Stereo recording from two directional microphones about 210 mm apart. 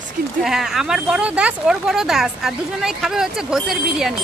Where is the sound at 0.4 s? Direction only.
Centre (ahead or behind).